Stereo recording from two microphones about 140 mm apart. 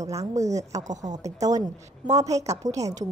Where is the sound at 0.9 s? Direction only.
55° right (ahead or behind).